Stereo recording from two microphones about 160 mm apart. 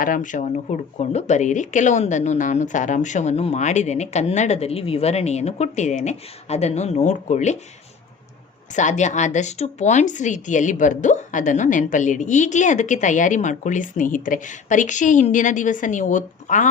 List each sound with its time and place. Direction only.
0.0 s a woman's voice: 55° left (ahead or behind)
8.7 s a woman's voice: 50° left (ahead or behind)